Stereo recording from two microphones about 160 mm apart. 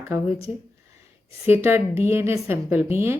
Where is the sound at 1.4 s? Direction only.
15° right (ahead or behind).